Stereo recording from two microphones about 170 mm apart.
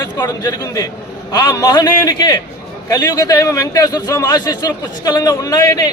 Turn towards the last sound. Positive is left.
turn(degrees=20)  # may be behind; listen again after turning